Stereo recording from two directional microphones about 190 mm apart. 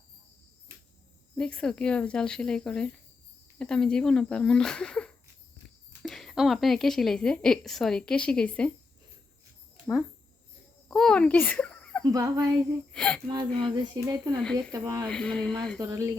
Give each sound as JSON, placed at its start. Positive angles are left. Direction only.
{"t": 1.4, "sound": "a woman's voice", "side_deg": 5}
{"t": 10.8, "sound": "a child's voice", "side_deg": 5}
{"t": 12.0, "sound": "speech", "side_deg": -20}
{"t": 12.9, "sound": "speech", "side_deg": 5}
{"t": 13.2, "sound": "speech", "side_deg": -25}
{"t": 15.1, "sound": "a woman's voice", "side_deg": 5}
{"t": 15.8, "sound": "speech", "side_deg": -15}